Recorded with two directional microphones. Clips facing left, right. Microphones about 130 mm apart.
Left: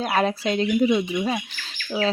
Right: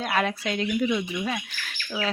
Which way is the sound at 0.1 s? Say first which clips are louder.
Left 4 dB; 35° left (ahead or behind).